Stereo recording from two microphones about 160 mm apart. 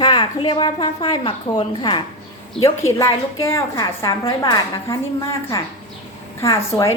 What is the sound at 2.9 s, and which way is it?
A woman's voice, 20° left (ahead or behind).